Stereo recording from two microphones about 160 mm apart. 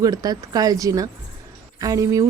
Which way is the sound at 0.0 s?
25° right (ahead or behind).